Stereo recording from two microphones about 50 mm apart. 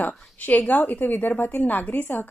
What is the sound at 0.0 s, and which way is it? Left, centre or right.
A woman's voice, left.